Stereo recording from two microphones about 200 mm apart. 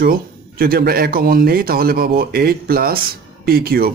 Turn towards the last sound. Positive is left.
turn(degrees=-50)  # may be behind; listen again after turning